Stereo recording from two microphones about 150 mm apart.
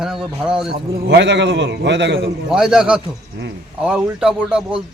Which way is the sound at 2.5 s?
5° right (ahead or behind).